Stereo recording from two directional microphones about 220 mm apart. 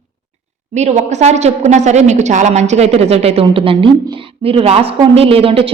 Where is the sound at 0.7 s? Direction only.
30° right (ahead or behind).